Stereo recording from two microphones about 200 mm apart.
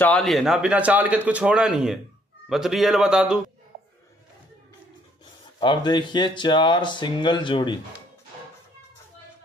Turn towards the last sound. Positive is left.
turn(degrees=25)  # may be behind; listen again after turning